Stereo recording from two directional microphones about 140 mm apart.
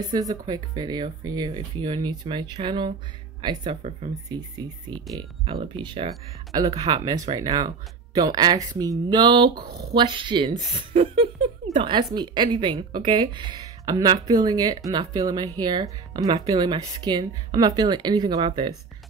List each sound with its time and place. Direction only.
0.1 s speech: 30° right (ahead or behind)